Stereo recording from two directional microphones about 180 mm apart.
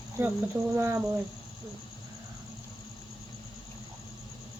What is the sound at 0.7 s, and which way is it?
Speech, 15° right (ahead or behind).